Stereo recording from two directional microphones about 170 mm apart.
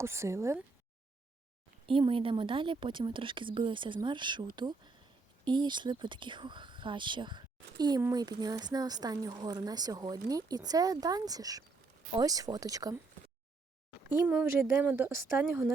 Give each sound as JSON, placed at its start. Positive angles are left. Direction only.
{"t": 0.0, "sound": "speech", "side_deg": -15}
{"t": 1.9, "sound": "speech", "side_deg": -30}
{"t": 5.5, "sound": "speech", "side_deg": -25}
{"t": 14.1, "sound": "speech", "side_deg": -10}